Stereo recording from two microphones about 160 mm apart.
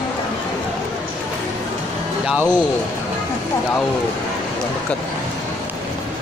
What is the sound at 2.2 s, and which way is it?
Speech, 10° right (ahead or behind).